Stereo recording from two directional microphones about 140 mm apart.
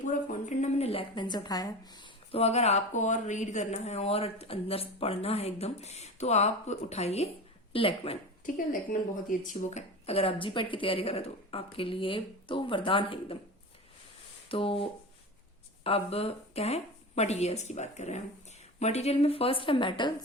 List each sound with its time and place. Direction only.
0.0 s speech: 65° left (ahead or behind); by 2.4 s 35° left (ahead or behind)
2.4 s speech: 50° left (ahead or behind)
8.5 s speech: 70° left (ahead or behind); by 13.3 s 40° left (ahead or behind)
14.5 s speech: 40° left (ahead or behind)